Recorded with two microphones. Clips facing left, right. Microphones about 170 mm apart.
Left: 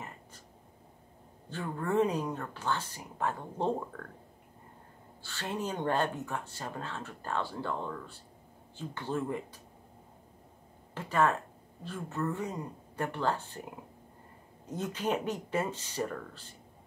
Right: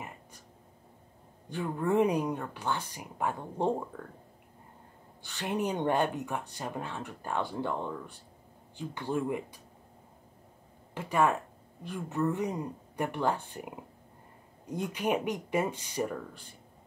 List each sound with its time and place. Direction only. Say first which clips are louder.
1.5 s speech: right 3 dB; 15° right (ahead or behind)
5.2 s speech: right 4 dB; 15° right (ahead or behind)
11.0 s speech: right 1 dB; 15° right (ahead or behind)